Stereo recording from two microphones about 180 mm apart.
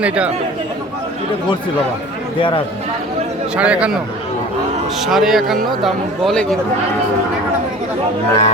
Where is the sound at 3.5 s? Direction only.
5° right (ahead or behind).